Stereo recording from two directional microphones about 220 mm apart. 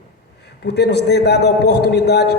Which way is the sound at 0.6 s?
50° left (ahead or behind).